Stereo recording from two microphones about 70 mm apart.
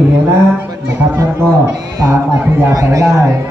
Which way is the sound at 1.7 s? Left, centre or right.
Right.